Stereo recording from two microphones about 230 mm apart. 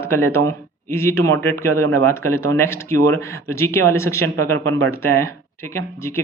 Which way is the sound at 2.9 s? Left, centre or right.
Right.